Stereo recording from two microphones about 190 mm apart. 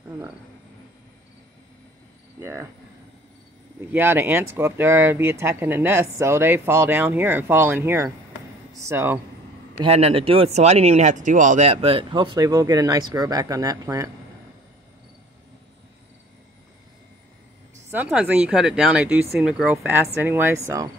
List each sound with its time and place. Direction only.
2.4 s speech: 15° right (ahead or behind)
3.9 s speech: 10° right (ahead or behind)
9.8 s speech: 30° right (ahead or behind); by 14.1 s 15° right (ahead or behind)
17.9 s speech: 10° right (ahead or behind)